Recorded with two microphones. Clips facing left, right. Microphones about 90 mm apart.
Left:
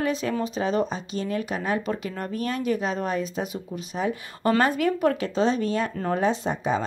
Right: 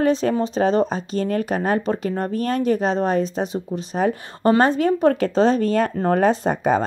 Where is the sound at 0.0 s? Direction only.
35° right (ahead or behind).